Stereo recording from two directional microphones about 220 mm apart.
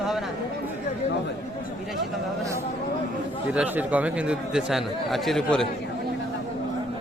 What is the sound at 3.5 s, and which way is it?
Speech, 5° right (ahead or behind).